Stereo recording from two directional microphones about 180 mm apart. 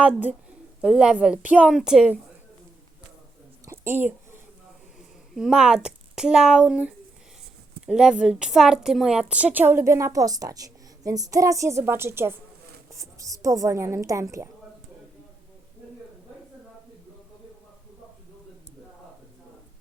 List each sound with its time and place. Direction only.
0.0 s a woman's voice: 10° right (ahead or behind)
3.7 s a sound: 15° right (ahead or behind)
4.9 s a woman's voice: 5° right (ahead or behind)